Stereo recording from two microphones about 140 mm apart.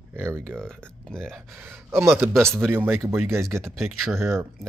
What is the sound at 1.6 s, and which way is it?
Speech, 15° right (ahead or behind).